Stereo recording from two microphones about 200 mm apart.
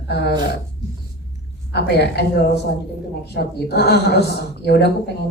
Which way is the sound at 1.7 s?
55° left (ahead or behind).